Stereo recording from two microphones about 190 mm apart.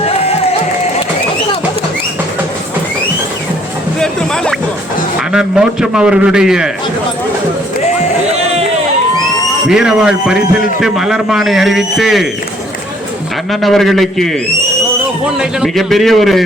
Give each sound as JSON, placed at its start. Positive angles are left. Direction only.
{"t": 5.3, "sound": "speech", "side_deg": -5}
{"t": 8.3, "sound": "a sound", "side_deg": -35}
{"t": 9.6, "sound": "speech", "side_deg": -5}
{"t": 13.5, "sound": "speech", "side_deg": 0}
{"t": 15.4, "sound": "speech", "side_deg": 0}